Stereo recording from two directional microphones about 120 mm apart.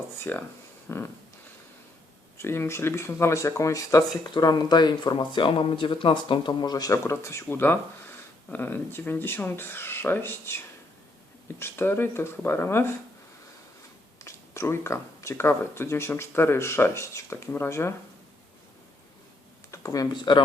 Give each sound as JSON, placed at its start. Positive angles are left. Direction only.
{"t": 0.2, "sound": "speech", "side_deg": 15}
{"t": 0.9, "sound": "a sound", "side_deg": 20}
{"t": 2.4, "sound": "speech", "side_deg": 20}
{"t": 11.6, "sound": "speech", "side_deg": 20}
{"t": 14.3, "sound": "speech", "side_deg": 25}
{"t": 19.7, "sound": "speech", "side_deg": 30}